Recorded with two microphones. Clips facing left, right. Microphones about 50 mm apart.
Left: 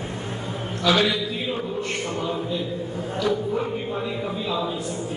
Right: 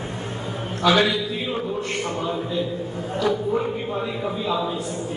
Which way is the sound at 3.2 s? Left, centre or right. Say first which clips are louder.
Right 2 dB; centre.